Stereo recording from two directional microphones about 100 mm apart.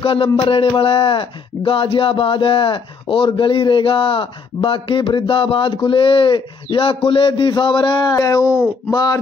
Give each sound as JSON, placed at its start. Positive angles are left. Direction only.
{"t": 0.0, "sound": "speech", "side_deg": 65}
{"t": 8.1, "sound": "speech", "side_deg": 35}